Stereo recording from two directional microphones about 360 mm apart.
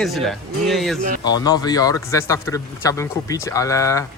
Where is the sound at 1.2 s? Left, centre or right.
Centre.